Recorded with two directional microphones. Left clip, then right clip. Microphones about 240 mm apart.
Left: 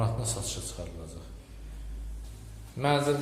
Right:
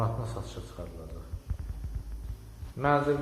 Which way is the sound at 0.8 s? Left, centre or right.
Left.